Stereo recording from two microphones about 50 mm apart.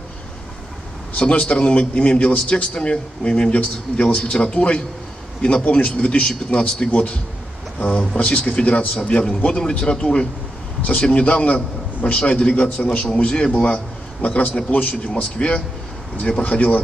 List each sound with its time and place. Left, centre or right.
1.1 s a man's voice: left
10.8 s a man's voice: left